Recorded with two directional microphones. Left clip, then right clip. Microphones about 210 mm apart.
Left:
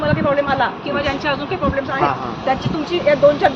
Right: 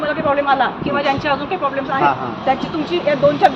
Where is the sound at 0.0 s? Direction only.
Centre (ahead or behind).